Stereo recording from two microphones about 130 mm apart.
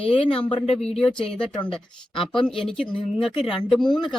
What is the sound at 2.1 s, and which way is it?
Speech, 5° left (ahead or behind).